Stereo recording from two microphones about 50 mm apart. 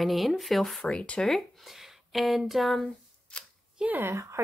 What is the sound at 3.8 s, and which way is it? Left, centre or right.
Speech, right.